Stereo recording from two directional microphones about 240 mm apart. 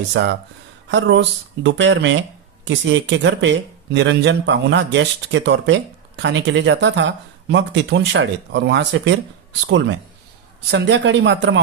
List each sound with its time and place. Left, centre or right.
0.1 s speech: right
10.7 s speech: right